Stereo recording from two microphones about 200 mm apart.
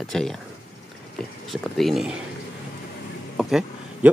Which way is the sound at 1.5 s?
Centre (ahead or behind).